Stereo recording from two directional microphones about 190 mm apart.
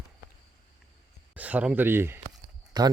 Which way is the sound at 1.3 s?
10° right (ahead or behind).